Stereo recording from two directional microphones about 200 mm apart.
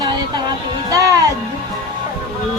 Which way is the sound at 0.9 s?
15° right (ahead or behind).